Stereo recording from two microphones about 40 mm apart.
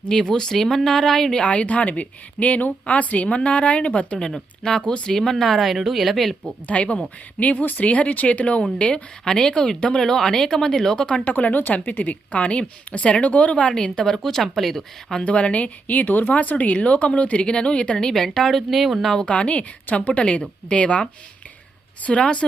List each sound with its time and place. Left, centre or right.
0.1 s a woman's voice: centre
1.3 s speech: left
3.2 s a woman's voice: left
4.9 s speech: centre
6.7 s speech: left
7.9 s speech: left
9.2 s a woman's voice: centre
11.0 s a woman's voice: left
11.3 s a woman's voice: left; by 15.2 s centre
15.2 s speech: left
17.9 s speech: centre
19.3 s a woman's voice: left
22.2 s a woman's voice: left